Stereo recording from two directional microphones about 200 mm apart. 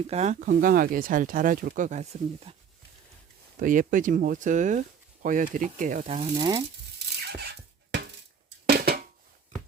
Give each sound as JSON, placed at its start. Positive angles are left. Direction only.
{"t": 0.1, "sound": "speech", "side_deg": -35}
{"t": 3.6, "sound": "speech", "side_deg": -40}
{"t": 7.0, "sound": "a sound", "side_deg": -55}